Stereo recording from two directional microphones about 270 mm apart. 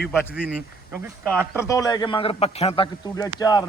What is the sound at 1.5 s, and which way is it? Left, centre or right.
A man's voice, centre.